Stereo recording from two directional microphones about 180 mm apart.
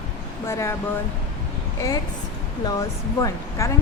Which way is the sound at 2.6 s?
20° left (ahead or behind).